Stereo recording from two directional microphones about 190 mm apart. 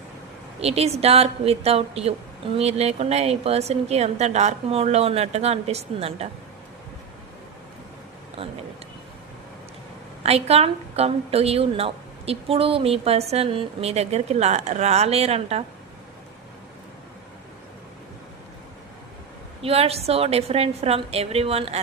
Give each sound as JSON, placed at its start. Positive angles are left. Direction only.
{"t": 0.6, "sound": "a woman's voice", "side_deg": -35}
{"t": 10.2, "sound": "a woman's voice", "side_deg": -30}
{"t": 19.6, "sound": "a woman's voice", "side_deg": -30}